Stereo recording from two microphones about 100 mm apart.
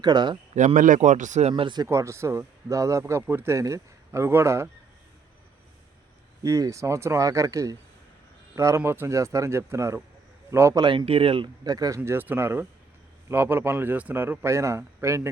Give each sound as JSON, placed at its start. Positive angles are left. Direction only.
{"t": 0.0, "sound": "speech", "side_deg": -45}
{"t": 1.4, "sound": "speech", "side_deg": -90}
{"t": 1.6, "sound": "speech", "side_deg": -45}
{"t": 1.9, "sound": "speech", "side_deg": -30}
{"t": 6.4, "sound": "speech", "side_deg": -35}
{"t": 10.8, "sound": "speech", "side_deg": -55}
{"t": 11.6, "sound": "speech", "side_deg": -40}
{"t": 11.9, "sound": "speech", "side_deg": -20}